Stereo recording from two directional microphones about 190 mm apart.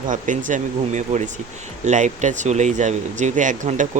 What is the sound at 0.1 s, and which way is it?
Speech, 40° right (ahead or behind).